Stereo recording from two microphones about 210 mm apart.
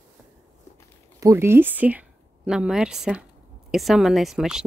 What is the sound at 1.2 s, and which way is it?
A woman's voice, 10° right (ahead or behind).